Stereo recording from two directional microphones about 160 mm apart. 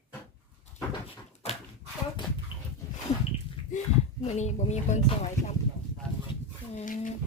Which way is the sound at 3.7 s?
50° left (ahead or behind).